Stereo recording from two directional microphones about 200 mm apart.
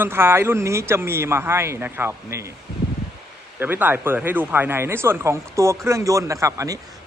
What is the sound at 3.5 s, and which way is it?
Speech, 10° right (ahead or behind).